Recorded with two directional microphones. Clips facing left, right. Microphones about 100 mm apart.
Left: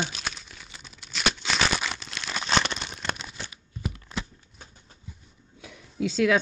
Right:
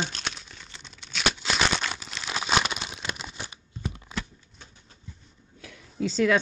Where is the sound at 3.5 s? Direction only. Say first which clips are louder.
Left 1 dB; 25° right (ahead or behind).